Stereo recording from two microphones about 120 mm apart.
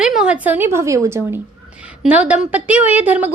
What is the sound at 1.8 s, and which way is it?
A woman's voice, 10° right (ahead or behind).